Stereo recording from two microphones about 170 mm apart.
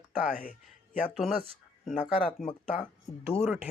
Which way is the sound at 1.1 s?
Centre (ahead or behind).